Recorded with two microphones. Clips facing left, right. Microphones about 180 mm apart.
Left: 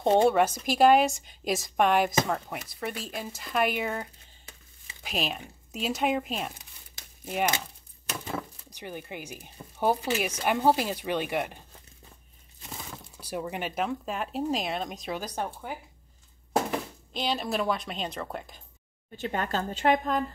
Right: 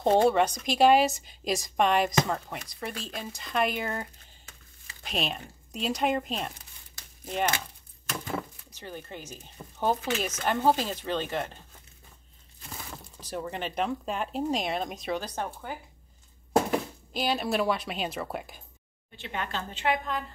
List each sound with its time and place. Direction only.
0.0 s a woman's voice: centre (ahead or behind)
8.7 s speech: 15° left (ahead or behind)
13.2 s a woman's voice: 10° left (ahead or behind)
15.1 s speech: 10° left (ahead or behind)
17.1 s a woman's voice: 5° right (ahead or behind)
19.1 s speech: 40° left (ahead or behind)